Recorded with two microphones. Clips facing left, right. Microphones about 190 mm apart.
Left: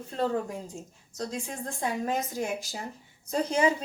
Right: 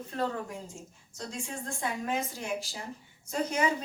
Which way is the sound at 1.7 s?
40° left (ahead or behind).